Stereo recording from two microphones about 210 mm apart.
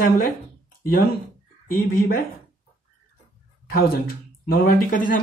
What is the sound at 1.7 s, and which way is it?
Speech, 45° left (ahead or behind).